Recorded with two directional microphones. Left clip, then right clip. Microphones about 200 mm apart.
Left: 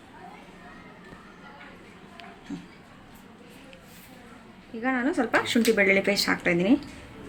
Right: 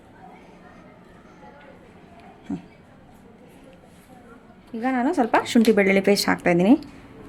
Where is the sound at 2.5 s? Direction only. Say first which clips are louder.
Right 7 dB; 55° right (ahead or behind).